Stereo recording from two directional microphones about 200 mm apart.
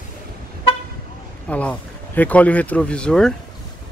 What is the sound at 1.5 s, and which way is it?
Speech, 5° left (ahead or behind).